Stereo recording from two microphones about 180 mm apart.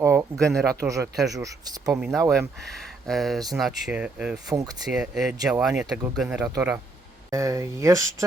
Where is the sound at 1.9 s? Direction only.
Centre (ahead or behind).